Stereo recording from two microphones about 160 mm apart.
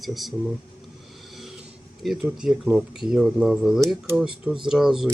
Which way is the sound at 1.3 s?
Centre (ahead or behind).